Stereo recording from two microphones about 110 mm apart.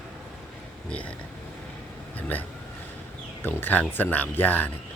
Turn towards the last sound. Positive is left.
turn(degrees=15)  # may be behind; listen again after turning